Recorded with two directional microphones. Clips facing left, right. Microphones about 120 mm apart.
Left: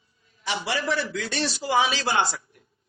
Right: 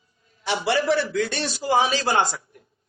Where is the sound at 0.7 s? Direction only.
55° right (ahead or behind).